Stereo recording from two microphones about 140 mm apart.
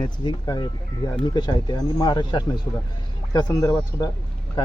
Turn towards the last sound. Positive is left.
turn(degrees=25)  # may be behind; listen again after turning